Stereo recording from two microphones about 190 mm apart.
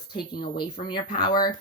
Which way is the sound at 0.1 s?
25° left (ahead or behind).